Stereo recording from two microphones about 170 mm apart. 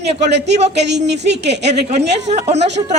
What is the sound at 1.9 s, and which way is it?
Speech, 40° right (ahead or behind).